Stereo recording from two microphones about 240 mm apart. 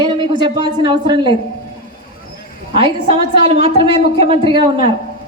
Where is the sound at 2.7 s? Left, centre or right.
Right.